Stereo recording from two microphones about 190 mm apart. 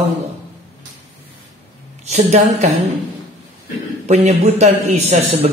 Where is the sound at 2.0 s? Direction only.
35° right (ahead or behind).